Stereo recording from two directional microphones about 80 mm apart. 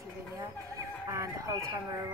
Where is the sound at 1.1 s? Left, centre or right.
Right.